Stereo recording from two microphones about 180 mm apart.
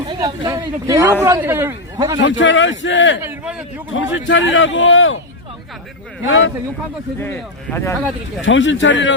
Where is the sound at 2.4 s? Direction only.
90° left.